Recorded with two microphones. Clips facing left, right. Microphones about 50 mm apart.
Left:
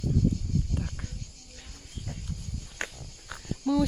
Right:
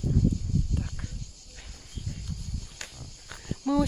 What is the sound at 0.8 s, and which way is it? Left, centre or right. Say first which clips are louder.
Cricket: even; centre.